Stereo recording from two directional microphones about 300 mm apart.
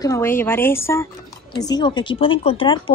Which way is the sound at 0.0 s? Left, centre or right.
Centre.